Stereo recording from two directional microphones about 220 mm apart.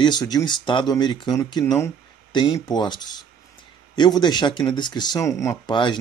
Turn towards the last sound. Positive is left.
turn(degrees=20)  # may be behind; listen again after turning